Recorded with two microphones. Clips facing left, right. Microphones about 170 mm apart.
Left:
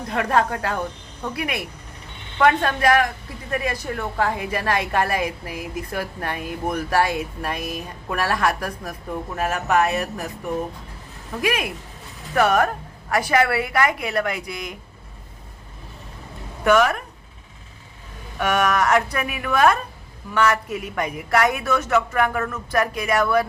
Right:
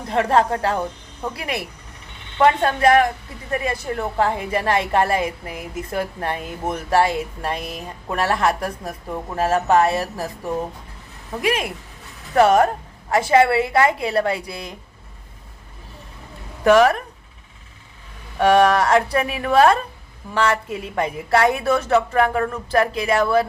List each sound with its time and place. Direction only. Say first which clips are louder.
0.1 s a woman's voice: right 3 dB; 30° right (ahead or behind)
16.6 s a woman's voice: right 4 dB; 35° right (ahead or behind)
18.3 s a woman's voice: right 6 dB; 30° right (ahead or behind)